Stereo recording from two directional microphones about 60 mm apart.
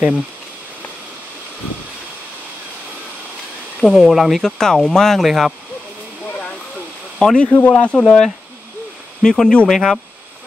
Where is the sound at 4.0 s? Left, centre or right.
Centre.